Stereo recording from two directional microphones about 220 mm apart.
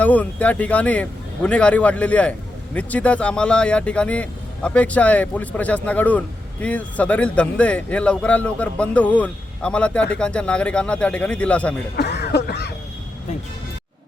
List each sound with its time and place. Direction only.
0.0 s speech: 5° left (ahead or behind)
11.9 s music: 50° left (ahead or behind)